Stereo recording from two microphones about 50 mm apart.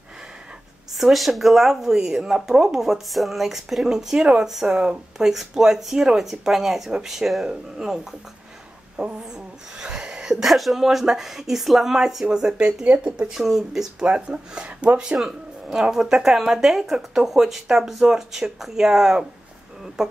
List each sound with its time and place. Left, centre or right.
0.9 s speech: centre
9.8 s a sound: centre
10.4 s speech: centre